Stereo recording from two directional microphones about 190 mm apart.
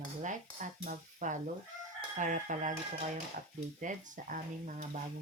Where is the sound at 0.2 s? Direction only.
40° right (ahead or behind).